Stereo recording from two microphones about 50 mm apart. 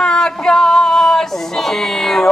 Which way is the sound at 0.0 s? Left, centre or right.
Centre.